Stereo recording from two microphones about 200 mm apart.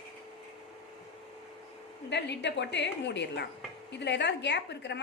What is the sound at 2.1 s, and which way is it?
A woman's voice, 60° left (ahead or behind).